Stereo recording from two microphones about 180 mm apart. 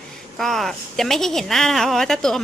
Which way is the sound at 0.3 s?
Centre (ahead or behind).